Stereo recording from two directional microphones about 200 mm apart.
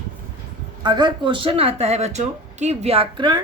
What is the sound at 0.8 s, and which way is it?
Speech, 20° right (ahead or behind).